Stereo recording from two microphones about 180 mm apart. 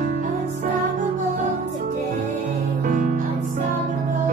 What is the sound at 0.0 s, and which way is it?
Music, 45° right (ahead or behind).